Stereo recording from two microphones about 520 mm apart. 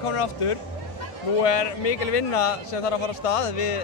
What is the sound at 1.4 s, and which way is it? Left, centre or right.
A man's voice, left.